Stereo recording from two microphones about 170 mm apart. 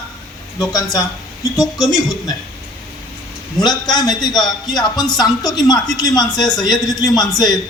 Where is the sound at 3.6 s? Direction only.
5° left (ahead or behind).